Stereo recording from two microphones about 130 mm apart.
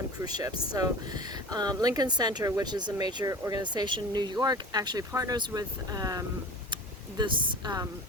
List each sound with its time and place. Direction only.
0.2 s speech: 30° right (ahead or behind)